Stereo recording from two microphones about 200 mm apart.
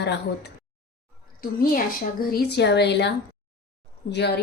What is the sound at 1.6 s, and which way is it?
Speech, 45° left (ahead or behind).